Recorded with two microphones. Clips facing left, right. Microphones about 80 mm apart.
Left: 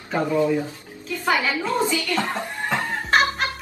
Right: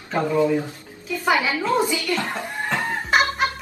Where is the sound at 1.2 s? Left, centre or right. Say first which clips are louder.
Right 1 dB; centre.